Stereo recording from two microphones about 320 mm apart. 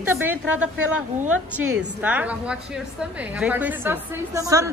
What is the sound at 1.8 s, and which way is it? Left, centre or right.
A woman's voice, centre.